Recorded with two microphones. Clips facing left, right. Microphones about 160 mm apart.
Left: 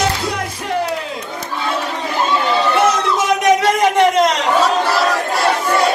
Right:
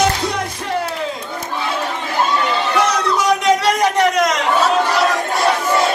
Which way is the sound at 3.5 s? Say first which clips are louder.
Left 4 dB; 25° left (ahead or behind).